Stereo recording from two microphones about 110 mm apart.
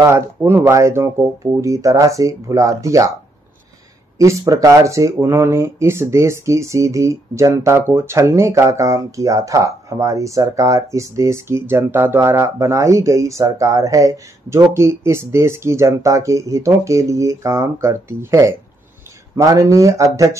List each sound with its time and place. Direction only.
0.0 s speech: 20° right (ahead or behind)
4.2 s speech: 30° right (ahead or behind)